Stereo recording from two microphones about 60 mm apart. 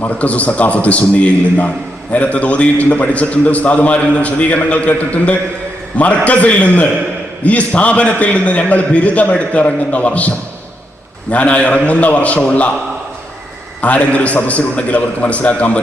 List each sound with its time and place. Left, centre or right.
0.0 s a man's voice: left
13.8 s a man's voice: left